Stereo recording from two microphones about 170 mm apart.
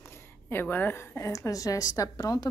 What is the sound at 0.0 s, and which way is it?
A woman's voice, 15° left (ahead or behind).